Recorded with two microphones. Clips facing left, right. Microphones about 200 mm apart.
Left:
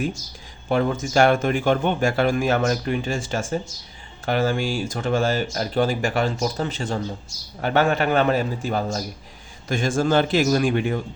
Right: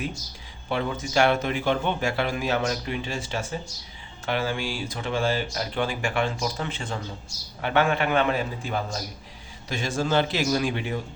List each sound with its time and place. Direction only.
0.7 s a man's voice: 45° left (ahead or behind)